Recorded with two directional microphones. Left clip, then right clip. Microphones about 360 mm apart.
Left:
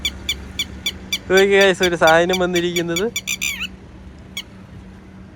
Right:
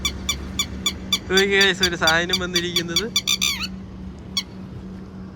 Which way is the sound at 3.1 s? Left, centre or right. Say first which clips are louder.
Right 3 dB; right.